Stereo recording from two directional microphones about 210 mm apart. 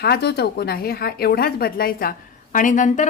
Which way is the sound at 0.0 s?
50° left (ahead or behind).